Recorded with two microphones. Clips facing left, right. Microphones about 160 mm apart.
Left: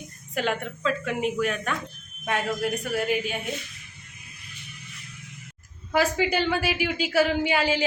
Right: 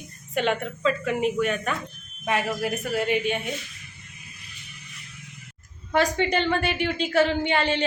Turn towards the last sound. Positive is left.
turn(degrees=5)  # may be behind; listen again after turning